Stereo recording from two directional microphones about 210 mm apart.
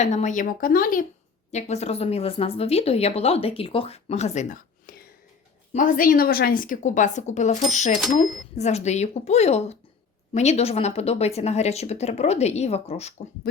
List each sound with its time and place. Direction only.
0.0 s speech: 35° left (ahead or behind)
1.5 s speech: 30° left (ahead or behind)